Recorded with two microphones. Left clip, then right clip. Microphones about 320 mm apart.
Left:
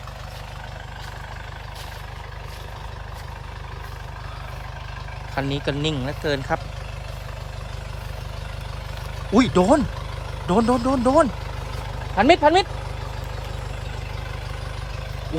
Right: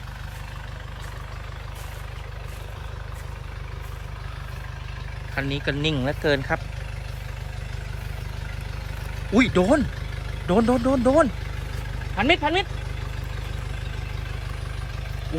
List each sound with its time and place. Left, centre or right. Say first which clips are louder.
5.3 s speech: left 1 dB; centre
9.3 s speech: left 2 dB; centre